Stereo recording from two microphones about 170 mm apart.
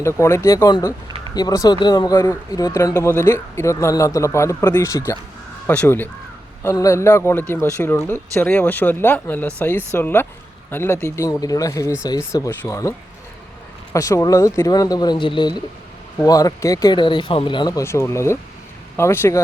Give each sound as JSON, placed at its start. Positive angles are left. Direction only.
{"t": 0.0, "sound": "a man's voice", "side_deg": 15}
{"t": 13.9, "sound": "speech", "side_deg": 20}